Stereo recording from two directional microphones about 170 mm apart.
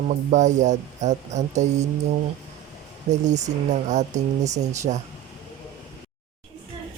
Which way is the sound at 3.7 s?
45° right (ahead or behind).